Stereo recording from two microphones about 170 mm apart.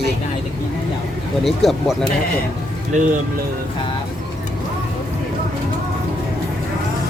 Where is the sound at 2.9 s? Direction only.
45° right (ahead or behind).